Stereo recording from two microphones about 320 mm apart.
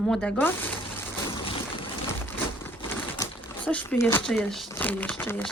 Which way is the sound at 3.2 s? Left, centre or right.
Centre.